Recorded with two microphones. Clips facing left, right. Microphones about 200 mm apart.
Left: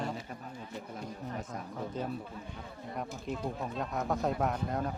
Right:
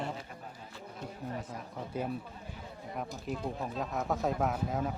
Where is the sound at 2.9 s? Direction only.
Centre (ahead or behind).